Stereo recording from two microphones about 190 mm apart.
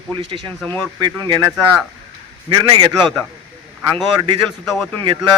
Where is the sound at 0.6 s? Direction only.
10° left (ahead or behind).